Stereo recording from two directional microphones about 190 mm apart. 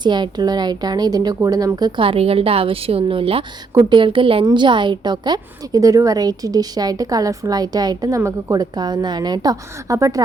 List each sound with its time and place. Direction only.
0.0 s speech: 25° right (ahead or behind)